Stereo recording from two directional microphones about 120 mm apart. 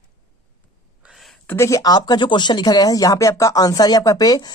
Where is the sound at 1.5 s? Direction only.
20° left (ahead or behind).